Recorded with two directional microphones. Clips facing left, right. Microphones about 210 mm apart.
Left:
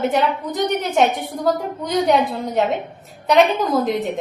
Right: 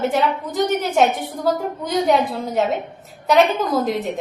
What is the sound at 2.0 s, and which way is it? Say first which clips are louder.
A woman's voice: even; centre (ahead or behind).